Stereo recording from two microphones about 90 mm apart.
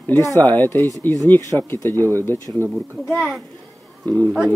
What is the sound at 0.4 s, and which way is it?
Speech, 20° left (ahead or behind).